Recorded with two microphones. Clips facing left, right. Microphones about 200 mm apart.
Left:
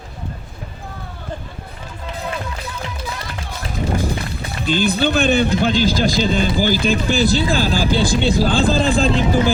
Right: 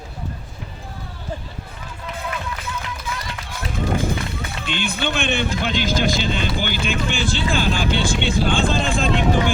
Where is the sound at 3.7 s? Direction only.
35° left (ahead or behind).